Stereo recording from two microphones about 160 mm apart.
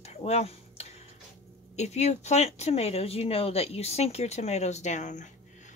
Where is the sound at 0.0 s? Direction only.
45° left (ahead or behind).